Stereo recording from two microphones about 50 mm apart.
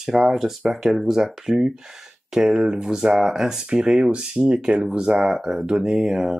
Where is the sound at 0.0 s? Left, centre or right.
Centre.